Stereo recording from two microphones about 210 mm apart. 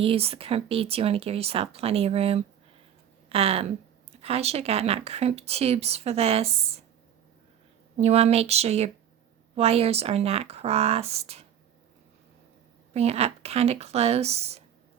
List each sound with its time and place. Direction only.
0.0 s speech: 25° right (ahead or behind)
7.9 s speech: 30° right (ahead or behind)
12.9 s speech: 30° right (ahead or behind)